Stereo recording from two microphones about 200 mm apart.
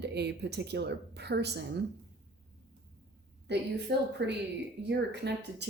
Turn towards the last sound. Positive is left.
turn(degrees=-55)  # may be behind; listen again after turning